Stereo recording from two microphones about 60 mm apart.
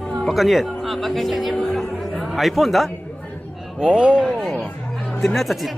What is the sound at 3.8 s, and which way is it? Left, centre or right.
Speech, centre.